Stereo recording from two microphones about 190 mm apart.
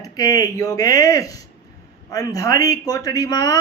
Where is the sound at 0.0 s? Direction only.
20° left (ahead or behind).